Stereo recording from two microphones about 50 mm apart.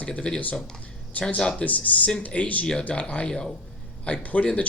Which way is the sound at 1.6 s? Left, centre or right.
Left.